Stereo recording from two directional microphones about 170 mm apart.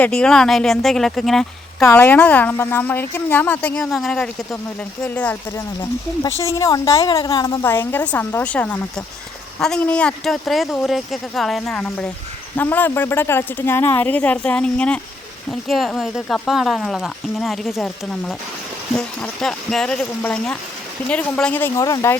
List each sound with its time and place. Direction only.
0.0 s speech: 5° left (ahead or behind)
1.8 s speech: 15° left (ahead or behind)